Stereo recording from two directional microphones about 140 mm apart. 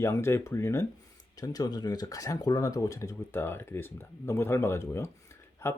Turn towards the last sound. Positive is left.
turn(degrees=20)  # may be behind; listen again after turning